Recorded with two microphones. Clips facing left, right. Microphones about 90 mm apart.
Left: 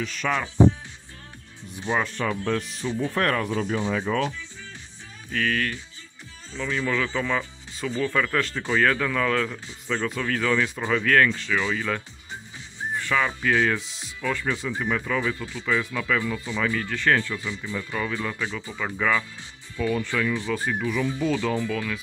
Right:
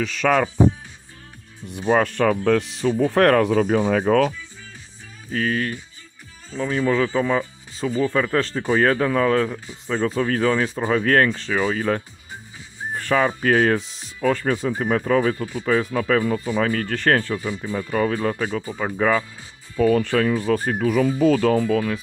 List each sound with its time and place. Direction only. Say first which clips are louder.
0.0 s speech: right 7 dB; 90° right
1.7 s speech: right 7 dB; 55° right (ahead or behind); by 2.9 s 70° right (ahead or behind)
3.2 s speech: right 9 dB; 85° right
3.6 s speech: right 7 dB; 60° right (ahead or behind)
5.3 s speech: right 3 dB; 35° right (ahead or behind)
19.8 s speech: right 7 dB; 50° right (ahead or behind)